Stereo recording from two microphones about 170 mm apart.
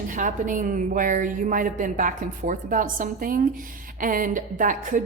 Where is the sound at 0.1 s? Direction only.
50° right (ahead or behind).